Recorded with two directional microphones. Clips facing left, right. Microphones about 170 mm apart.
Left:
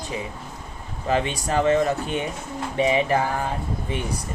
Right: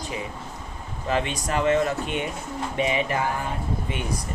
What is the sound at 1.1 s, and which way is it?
Speech, 30° left (ahead or behind).